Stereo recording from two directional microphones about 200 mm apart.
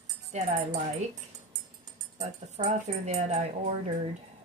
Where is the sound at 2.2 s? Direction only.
35° right (ahead or behind).